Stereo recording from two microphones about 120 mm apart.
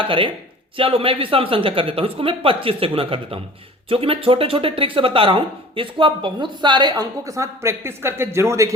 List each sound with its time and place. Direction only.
0.0 s speech: 45° right (ahead or behind); by 8.7 s 25° right (ahead or behind)